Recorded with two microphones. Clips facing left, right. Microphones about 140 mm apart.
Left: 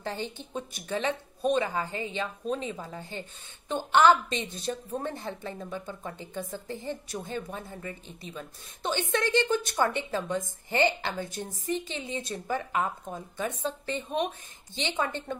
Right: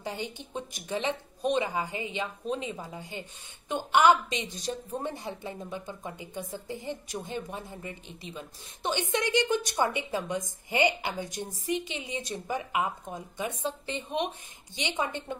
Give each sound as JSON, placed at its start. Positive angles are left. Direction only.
{"t": 0.0, "sound": "a woman's voice", "side_deg": -15}